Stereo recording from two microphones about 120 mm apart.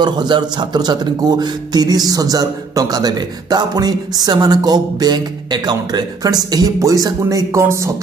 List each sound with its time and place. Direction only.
0.0 s speech: 40° right (ahead or behind)